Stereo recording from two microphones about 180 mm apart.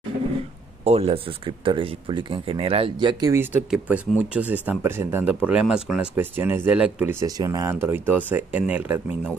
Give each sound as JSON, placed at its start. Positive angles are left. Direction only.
{"t": 0.8, "sound": "speech", "side_deg": -35}